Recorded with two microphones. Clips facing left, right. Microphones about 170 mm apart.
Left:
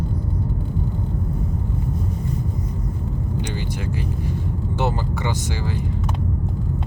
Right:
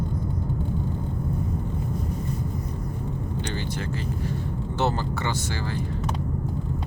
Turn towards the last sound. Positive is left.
turn(degrees=15)  # may be behind; listen again after turning